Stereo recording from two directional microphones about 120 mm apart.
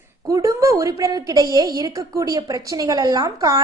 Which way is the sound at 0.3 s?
25° right (ahead or behind).